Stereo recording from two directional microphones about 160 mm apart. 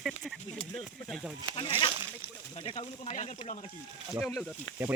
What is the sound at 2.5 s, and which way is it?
Speech, 35° left (ahead or behind).